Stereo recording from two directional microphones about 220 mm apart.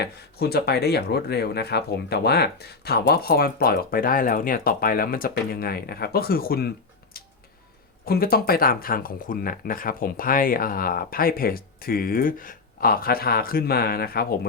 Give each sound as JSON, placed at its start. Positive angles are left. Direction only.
{"t": 0.0, "sound": "speech", "side_deg": 45}